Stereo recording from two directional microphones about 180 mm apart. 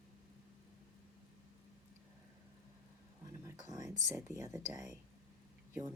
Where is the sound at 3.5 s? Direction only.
20° right (ahead or behind).